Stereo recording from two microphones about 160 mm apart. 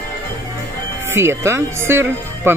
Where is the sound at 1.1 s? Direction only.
15° right (ahead or behind).